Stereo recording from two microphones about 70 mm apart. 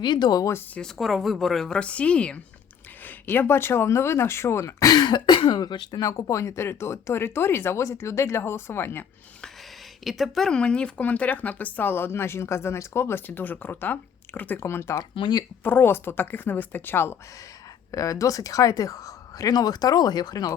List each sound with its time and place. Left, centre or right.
0.0 s speech: left
0.8 s speech: centre
1.8 s a woman's voice: centre
3.0 s speech: left
4.9 s speech: left
10.0 s a woman's voice: centre; by 14.6 s left
14.6 s a woman's voice: left
17.9 s speech: left